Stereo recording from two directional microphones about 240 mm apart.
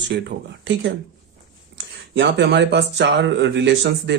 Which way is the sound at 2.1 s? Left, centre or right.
Right.